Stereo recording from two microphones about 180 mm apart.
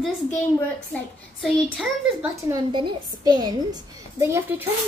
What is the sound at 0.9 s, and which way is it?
Speech, 5° left (ahead or behind).